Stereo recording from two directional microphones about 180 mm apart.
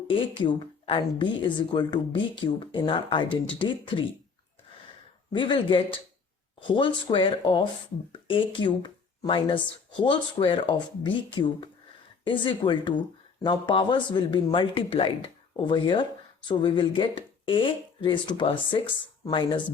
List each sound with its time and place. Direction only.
0.1 s speech: 30° left (ahead or behind)
5.3 s speech: 25° left (ahead or behind)